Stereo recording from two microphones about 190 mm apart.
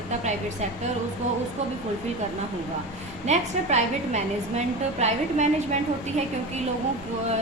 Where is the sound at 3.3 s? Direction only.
35° right (ahead or behind).